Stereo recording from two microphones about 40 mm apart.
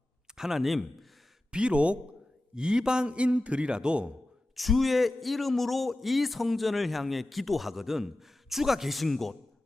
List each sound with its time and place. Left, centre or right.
0.3 s a man's voice: centre
1.5 s a man's voice: right
4.5 s speech: centre